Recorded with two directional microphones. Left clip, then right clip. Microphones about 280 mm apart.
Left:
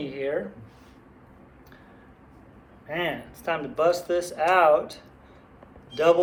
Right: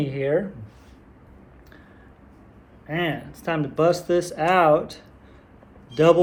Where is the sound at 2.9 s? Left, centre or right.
Right.